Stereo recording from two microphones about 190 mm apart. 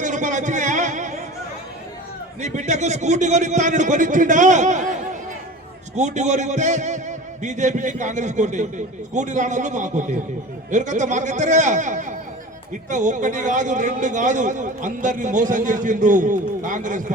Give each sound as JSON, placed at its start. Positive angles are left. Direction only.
{"t": 0.0, "sound": "a sound", "side_deg": -40}
{"t": 2.4, "sound": "a man's voice", "side_deg": -40}
{"t": 6.0, "sound": "a man's voice", "side_deg": -40}